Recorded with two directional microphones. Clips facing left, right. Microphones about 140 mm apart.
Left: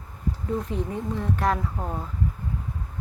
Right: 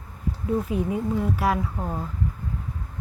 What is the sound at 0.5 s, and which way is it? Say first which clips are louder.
Speech: right 4 dB; 10° right (ahead or behind).